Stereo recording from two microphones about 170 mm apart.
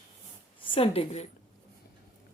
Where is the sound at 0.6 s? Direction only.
35° left (ahead or behind).